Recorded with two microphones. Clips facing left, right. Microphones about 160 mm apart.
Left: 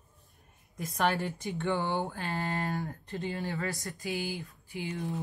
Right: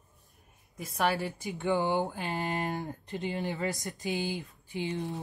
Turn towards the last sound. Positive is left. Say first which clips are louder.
# right 2 dB
turn(degrees=-25)  # may be behind; listen again after turning